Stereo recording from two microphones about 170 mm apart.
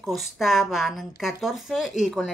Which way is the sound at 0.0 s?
Centre (ahead or behind).